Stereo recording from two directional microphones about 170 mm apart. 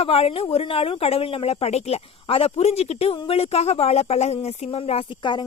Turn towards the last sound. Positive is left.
turn(degrees=30)  # may be behind; listen again after turning